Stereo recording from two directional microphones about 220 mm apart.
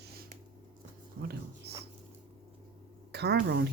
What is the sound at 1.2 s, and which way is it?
Speech, 45° right (ahead or behind).